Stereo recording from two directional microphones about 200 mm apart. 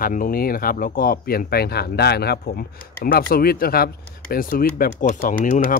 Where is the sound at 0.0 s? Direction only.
45° left (ahead or behind).